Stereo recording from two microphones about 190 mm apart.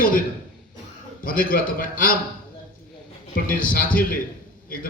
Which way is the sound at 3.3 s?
45° left (ahead or behind).